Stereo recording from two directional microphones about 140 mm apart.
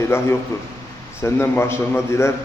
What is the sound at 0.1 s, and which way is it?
A man's voice, 15° left (ahead or behind).